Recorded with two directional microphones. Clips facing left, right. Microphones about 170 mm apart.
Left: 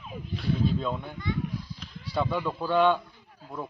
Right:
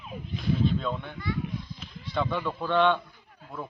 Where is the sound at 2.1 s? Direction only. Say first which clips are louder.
Left 1 dB; 10° left (ahead or behind).